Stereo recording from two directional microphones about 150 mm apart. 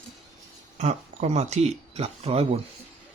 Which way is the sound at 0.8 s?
50° right (ahead or behind).